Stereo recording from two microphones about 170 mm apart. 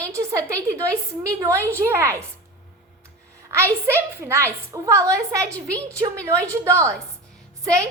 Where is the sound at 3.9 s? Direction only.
15° right (ahead or behind).